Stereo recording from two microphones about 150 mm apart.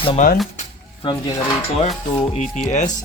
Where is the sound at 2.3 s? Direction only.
50° left (ahead or behind).